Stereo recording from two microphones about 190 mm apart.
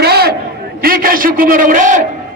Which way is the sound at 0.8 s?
50° right (ahead or behind).